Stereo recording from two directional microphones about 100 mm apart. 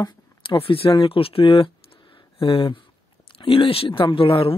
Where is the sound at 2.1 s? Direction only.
60° left (ahead or behind).